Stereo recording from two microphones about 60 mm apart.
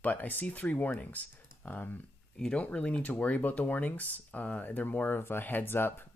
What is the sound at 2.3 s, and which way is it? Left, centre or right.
Speech, centre.